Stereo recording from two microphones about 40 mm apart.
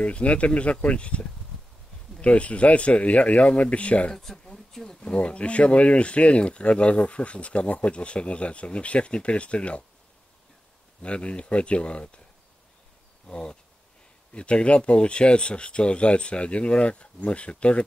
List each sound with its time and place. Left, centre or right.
0.0 s speech: left
4.1 s speech: centre
4.5 s a sound: centre
5.1 s speech: left
11.0 s speech: left
13.3 s speech: left